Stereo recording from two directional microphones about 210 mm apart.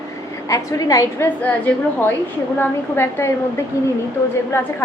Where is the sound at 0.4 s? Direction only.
15° left (ahead or behind).